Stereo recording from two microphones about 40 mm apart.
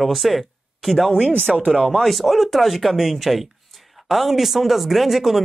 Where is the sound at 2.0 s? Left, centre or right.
Centre.